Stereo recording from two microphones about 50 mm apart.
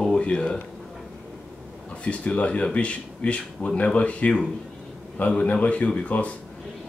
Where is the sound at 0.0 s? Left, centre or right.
Left.